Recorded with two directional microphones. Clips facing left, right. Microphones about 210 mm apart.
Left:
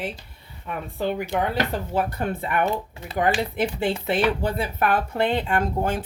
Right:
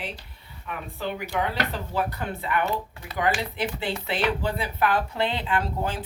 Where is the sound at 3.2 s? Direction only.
50° left (ahead or behind).